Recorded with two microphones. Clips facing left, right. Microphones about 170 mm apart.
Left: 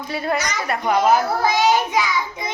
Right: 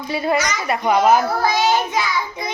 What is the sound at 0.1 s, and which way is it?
A woman's voice, 5° right (ahead or behind).